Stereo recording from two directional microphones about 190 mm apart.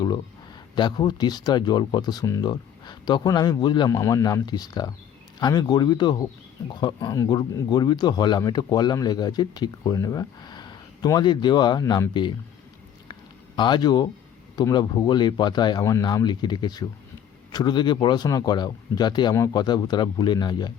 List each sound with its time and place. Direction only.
0.8 s speech: 20° left (ahead or behind)
13.6 s speech: 25° left (ahead or behind)